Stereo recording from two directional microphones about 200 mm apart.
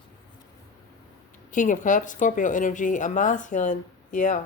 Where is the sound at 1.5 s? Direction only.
40° left (ahead or behind).